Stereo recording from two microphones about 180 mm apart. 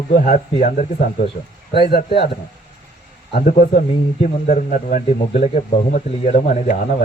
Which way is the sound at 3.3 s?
45° left (ahead or behind).